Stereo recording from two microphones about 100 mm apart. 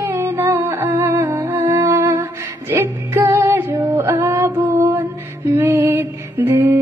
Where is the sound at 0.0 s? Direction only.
25° right (ahead or behind).